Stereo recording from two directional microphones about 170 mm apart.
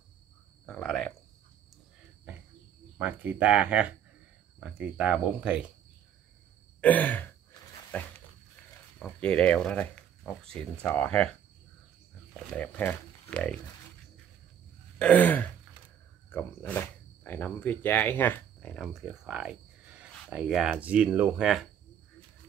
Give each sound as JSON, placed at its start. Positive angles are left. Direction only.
{"t": 0.7, "sound": "cricket", "side_deg": 5}
{"t": 3.0, "sound": "speech", "side_deg": -10}
{"t": 6.8, "sound": "gasp", "side_deg": 10}
{"t": 9.0, "sound": "speech", "side_deg": 5}
{"t": 12.4, "sound": "speech", "side_deg": 10}
{"t": 15.0, "sound": "gasp", "side_deg": 10}
{"t": 16.3, "sound": "speech", "side_deg": 10}